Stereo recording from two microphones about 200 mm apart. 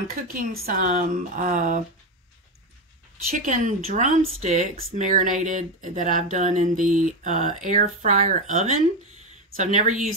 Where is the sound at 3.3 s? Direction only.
40° right (ahead or behind).